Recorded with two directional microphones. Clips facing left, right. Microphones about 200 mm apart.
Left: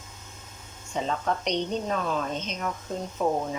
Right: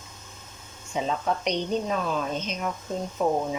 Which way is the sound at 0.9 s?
5° right (ahead or behind).